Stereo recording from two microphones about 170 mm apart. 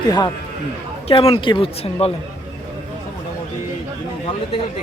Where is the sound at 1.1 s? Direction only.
35° left (ahead or behind).